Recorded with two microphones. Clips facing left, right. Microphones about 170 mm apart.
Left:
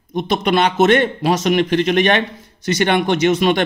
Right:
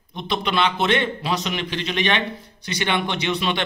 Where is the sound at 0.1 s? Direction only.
45° left (ahead or behind).